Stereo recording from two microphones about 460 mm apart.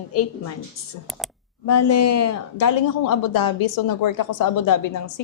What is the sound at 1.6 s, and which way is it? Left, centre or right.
A woman's voice, left.